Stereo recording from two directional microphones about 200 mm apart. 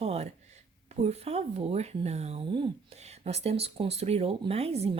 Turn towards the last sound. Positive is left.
turn(degrees=-30)  # may be behind; listen again after turning